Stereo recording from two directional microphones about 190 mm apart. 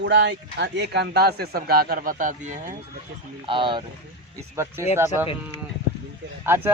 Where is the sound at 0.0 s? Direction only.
65° right (ahead or behind); by 2.7 s 40° right (ahead or behind).